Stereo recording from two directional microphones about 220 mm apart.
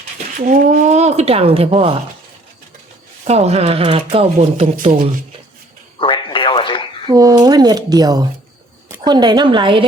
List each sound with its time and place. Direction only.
0.3 s speech: 40° right (ahead or behind)
3.2 s speech: 30° right (ahead or behind)
6.0 s a sound: 25° left (ahead or behind)
7.1 s a woman's voice: 15° right (ahead or behind)